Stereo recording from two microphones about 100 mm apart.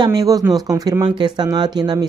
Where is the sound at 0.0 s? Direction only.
40° right (ahead or behind).